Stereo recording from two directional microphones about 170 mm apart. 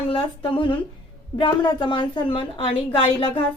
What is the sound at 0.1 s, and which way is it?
A woman's voice, 30° left (ahead or behind).